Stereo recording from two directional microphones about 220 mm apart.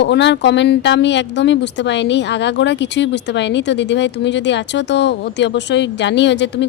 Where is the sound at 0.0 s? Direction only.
50° left (ahead or behind).